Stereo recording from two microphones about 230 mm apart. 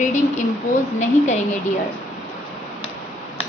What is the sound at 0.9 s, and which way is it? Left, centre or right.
Speech, left.